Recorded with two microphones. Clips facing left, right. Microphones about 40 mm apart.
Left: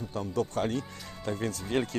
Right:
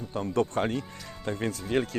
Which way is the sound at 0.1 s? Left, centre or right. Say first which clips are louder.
Right 3 dB; right.